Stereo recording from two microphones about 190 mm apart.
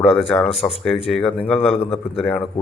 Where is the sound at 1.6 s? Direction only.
30° left (ahead or behind).